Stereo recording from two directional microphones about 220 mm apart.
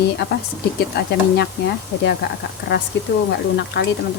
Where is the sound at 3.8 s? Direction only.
50° left (ahead or behind).